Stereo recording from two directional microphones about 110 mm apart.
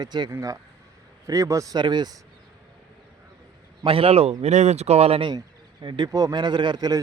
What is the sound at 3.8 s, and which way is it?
Speech, 60° right (ahead or behind).